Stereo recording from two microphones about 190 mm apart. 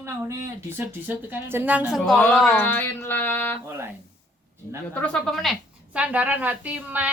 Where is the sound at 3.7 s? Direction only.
15° right (ahead or behind).